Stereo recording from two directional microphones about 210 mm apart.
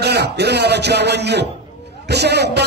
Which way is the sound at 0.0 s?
50° right (ahead or behind).